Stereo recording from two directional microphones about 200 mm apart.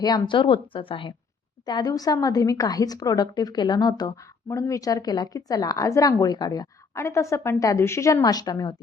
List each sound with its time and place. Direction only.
0.0 s a woman's voice: 20° left (ahead or behind)